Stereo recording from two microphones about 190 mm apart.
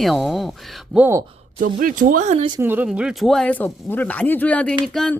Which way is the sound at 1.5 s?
45° right (ahead or behind).